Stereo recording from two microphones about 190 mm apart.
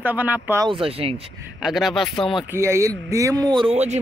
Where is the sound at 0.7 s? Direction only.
30° right (ahead or behind).